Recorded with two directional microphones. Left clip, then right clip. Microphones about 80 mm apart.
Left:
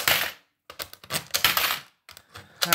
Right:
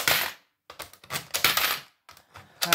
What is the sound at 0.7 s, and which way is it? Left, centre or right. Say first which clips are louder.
Typewriter: left 3 dB; left.